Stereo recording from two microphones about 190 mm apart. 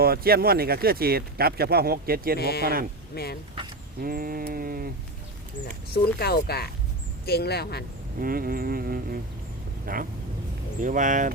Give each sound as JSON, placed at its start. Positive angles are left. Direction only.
{"t": 0.0, "sound": "speech", "side_deg": -55}
{"t": 2.4, "sound": "speech", "side_deg": 55}
{"t": 4.0, "sound": "speech", "side_deg": -50}
{"t": 5.6, "sound": "speech", "side_deg": 55}
{"t": 8.2, "sound": "speech", "side_deg": -50}